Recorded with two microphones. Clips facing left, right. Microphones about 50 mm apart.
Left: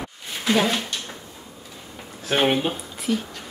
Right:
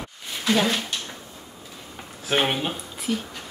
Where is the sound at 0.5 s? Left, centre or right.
Centre.